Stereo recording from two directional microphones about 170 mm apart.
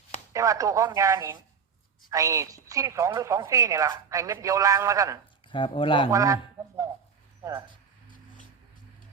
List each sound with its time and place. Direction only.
0.3 s speech: 20° right (ahead or behind)
5.5 s speech: 30° left (ahead or behind)
6.1 s speech: 20° right (ahead or behind)